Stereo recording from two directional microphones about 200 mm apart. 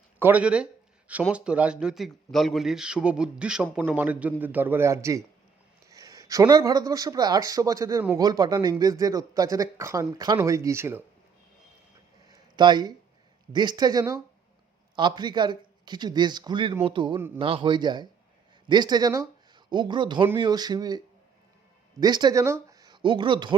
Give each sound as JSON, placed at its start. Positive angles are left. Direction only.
{"t": 0.2, "sound": "speech", "side_deg": -10}
{"t": 12.3, "sound": "a sound", "side_deg": -20}
{"t": 13.5, "sound": "speech", "side_deg": -20}
{"t": 22.0, "sound": "speech", "side_deg": -20}